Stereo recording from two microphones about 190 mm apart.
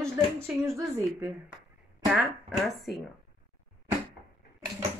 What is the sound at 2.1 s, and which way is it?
Speech, 5° right (ahead or behind).